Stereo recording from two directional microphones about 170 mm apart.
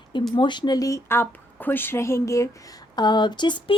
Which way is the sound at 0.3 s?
25° left (ahead or behind).